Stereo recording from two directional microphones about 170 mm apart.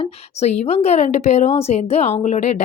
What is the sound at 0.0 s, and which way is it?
A woman's voice, 40° left (ahead or behind).